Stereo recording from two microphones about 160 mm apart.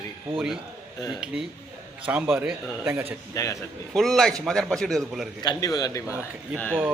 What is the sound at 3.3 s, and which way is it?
Speech, 20° left (ahead or behind).